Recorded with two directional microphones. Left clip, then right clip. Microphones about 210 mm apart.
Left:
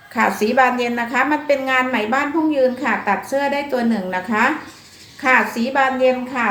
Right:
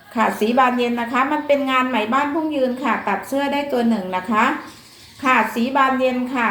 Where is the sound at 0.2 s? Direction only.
15° left (ahead or behind).